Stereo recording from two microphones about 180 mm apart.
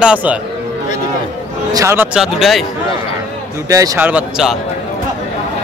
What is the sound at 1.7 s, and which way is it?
Speech, 15° right (ahead or behind).